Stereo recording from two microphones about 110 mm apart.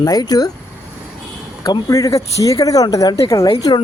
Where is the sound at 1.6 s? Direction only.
30° left (ahead or behind).